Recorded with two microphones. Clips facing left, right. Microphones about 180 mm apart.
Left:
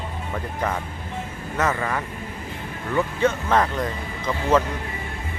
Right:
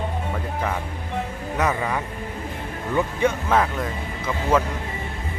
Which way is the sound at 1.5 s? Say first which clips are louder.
Even; 15° right (ahead or behind).